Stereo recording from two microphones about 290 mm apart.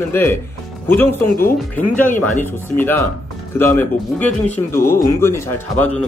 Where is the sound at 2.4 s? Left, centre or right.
Centre.